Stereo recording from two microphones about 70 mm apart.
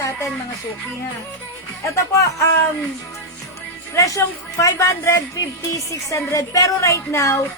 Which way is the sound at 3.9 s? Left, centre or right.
Left.